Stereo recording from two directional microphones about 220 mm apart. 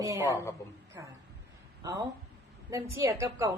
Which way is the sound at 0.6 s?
15° left (ahead or behind).